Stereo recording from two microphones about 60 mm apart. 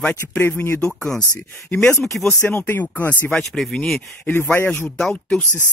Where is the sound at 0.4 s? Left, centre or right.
Left.